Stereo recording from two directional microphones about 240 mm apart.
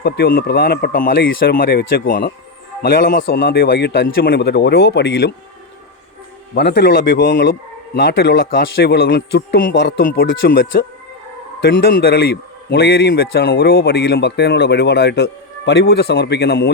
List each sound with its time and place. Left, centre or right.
0.0 s a man's voice: left
6.5 s a man's voice: left